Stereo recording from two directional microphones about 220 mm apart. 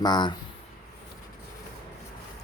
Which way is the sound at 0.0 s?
20° left (ahead or behind).